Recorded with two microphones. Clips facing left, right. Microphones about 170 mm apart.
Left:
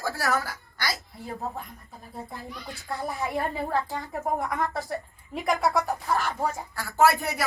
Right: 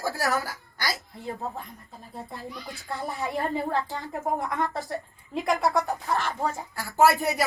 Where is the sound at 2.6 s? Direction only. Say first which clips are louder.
Left 2 dB; centre (ahead or behind).